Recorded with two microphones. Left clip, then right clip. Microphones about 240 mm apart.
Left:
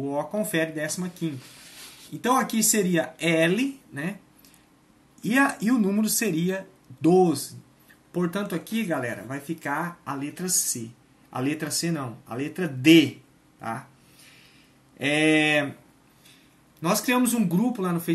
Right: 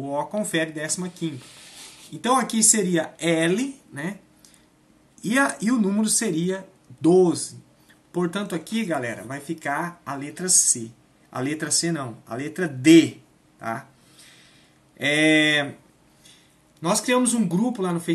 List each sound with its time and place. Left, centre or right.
0.0 s speech: centre
5.2 s speech: centre
13.6 s a sound: centre
15.0 s speech: centre
16.8 s speech: centre